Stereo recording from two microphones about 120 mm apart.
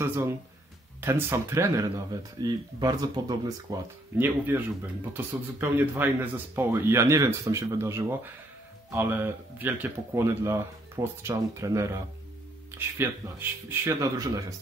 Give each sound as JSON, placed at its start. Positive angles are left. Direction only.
{"t": 0.0, "sound": "speech", "side_deg": -20}
{"t": 4.2, "sound": "speech", "side_deg": -15}
{"t": 14.1, "sound": "speech", "side_deg": -30}